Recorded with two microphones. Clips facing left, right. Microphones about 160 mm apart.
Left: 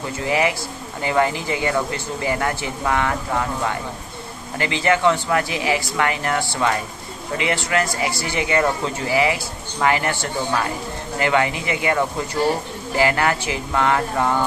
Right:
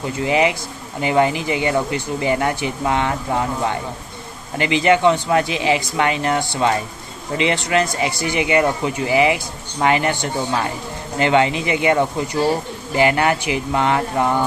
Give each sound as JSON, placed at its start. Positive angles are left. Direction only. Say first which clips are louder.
{"t": 0.2, "sound": "speech", "louder": "right 3 dB", "side_deg": -20}